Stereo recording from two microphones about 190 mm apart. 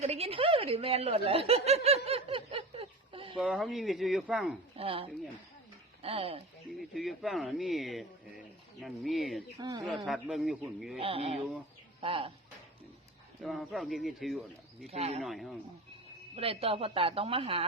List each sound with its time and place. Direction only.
0.0 s snicker: 35° right (ahead or behind)
3.3 s speech: centre (ahead or behind)
4.8 s speech: 30° right (ahead or behind)
6.7 s speech: centre (ahead or behind)
9.6 s speech: 20° right (ahead or behind)
9.9 s speech: centre (ahead or behind)
11.0 s speech: 30° right (ahead or behind)
13.4 s speech: centre (ahead or behind)
14.8 s speech: 35° right (ahead or behind)
15.2 s speech: centre (ahead or behind)
16.3 s speech: 30° right (ahead or behind)